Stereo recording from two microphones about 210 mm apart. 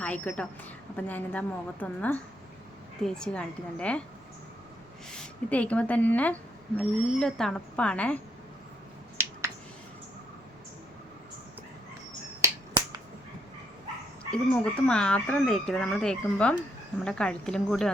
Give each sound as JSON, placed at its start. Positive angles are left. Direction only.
{"t": 0.0, "sound": "a woman's voice", "side_deg": 5}
{"t": 5.1, "sound": "speech", "side_deg": 5}
{"t": 12.4, "sound": "finger snapping", "side_deg": -15}
{"t": 14.3, "sound": "speech", "side_deg": 5}